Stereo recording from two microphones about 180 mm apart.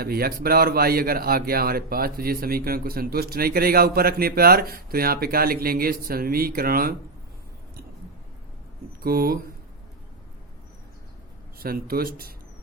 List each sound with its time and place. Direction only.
0.0 s a man's voice: 60° right (ahead or behind)
9.0 s a man's voice: 55° right (ahead or behind)
11.6 s a man's voice: 55° right (ahead or behind)